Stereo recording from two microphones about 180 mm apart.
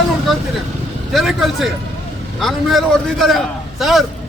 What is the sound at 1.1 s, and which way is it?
A man's voice, centre (ahead or behind).